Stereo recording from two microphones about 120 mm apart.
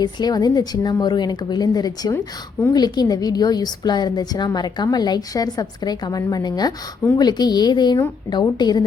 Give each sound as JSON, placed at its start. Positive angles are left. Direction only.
{"t": 0.0, "sound": "a woman's voice", "side_deg": 35}
{"t": 2.1, "sound": "speech", "side_deg": 20}
{"t": 2.7, "sound": "a woman's voice", "side_deg": 35}